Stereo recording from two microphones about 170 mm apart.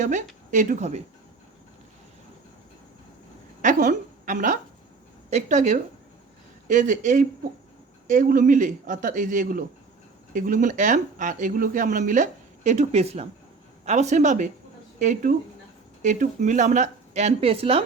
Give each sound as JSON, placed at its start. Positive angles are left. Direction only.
{"t": 0.5, "sound": "speech", "side_deg": -50}
{"t": 3.6, "sound": "a woman's voice", "side_deg": -50}